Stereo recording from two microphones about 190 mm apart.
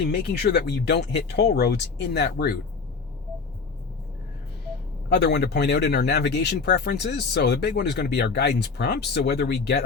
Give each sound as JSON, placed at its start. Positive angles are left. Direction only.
{"t": 0.1, "sound": "speech", "side_deg": 60}
{"t": 5.0, "sound": "speech", "side_deg": 60}